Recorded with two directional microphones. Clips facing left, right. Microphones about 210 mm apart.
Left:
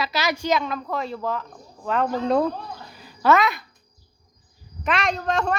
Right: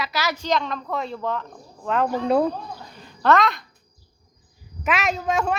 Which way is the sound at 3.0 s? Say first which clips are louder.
Even; 5° left (ahead or behind).